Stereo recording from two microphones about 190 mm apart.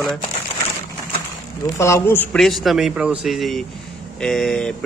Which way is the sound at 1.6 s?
15° left (ahead or behind).